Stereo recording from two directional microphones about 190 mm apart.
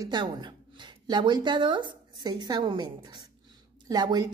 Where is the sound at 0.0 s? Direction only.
25° right (ahead or behind).